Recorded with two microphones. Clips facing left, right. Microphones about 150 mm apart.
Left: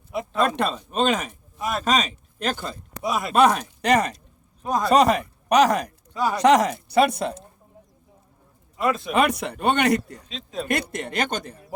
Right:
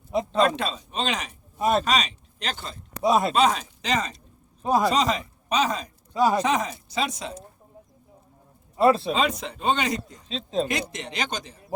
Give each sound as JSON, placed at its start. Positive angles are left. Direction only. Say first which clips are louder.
{"t": 0.3, "sound": "speech", "louder": "left 1 dB", "side_deg": 55}
{"t": 1.5, "sound": "speech", "louder": "right 5 dB", "side_deg": -25}
{"t": 1.8, "sound": "speech", "louder": "left 2 dB", "side_deg": 45}
{"t": 3.0, "sound": "speech", "louder": "right 5 dB", "side_deg": -25}
{"t": 3.3, "sound": "speech", "louder": "left 3 dB", "side_deg": 60}
{"t": 4.6, "sound": "speech", "louder": "right 3 dB", "side_deg": -15}
{"t": 4.9, "sound": "speech", "louder": "left 6 dB", "side_deg": 60}
{"t": 8.7, "sound": "speech", "louder": "right 5 dB", "side_deg": -35}
{"t": 9.1, "sound": "speech", "louder": "left 4 dB", "side_deg": 70}
{"t": 10.2, "sound": "speech", "louder": "right 5 dB", "side_deg": -30}
{"t": 10.7, "sound": "speech", "louder": "left 4 dB", "side_deg": 55}